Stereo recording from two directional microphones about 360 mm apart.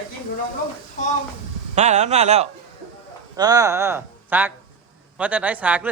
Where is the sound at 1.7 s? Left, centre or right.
Centre.